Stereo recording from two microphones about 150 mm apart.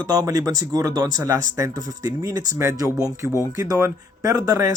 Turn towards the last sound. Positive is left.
turn(degrees=-20)  # may be behind; listen again after turning